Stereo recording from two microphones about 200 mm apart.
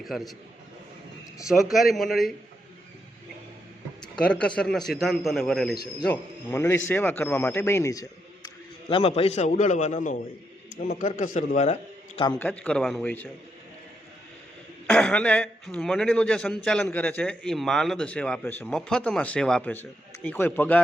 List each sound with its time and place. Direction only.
0.0 s speech: centre (ahead or behind)
1.5 s speech: centre (ahead or behind)
4.1 s a man's voice: 5° left (ahead or behind)
8.9 s a man's voice: 30° left (ahead or behind)
12.4 s a man's voice: 10° left (ahead or behind)
14.8 s speech: 5° left (ahead or behind)